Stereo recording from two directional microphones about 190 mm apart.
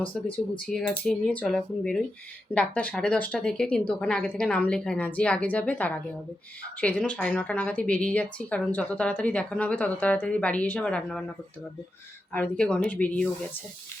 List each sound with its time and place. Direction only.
0.7 s a woman's voice: 5° left (ahead or behind)
12.3 s a woman's voice: 5° left (ahead or behind)